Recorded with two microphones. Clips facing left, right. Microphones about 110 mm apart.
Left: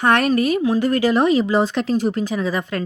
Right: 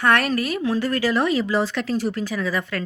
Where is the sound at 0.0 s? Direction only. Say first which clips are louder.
Left 4 dB; 20° left (ahead or behind).